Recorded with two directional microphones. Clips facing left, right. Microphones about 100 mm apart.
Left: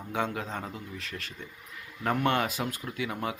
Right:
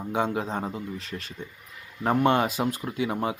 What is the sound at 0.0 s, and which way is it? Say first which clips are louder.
Speech: right 5 dB; 25° right (ahead or behind).